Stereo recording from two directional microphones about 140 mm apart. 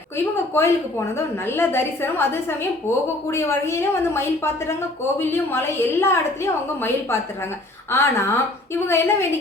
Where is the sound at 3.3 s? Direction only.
20° left (ahead or behind).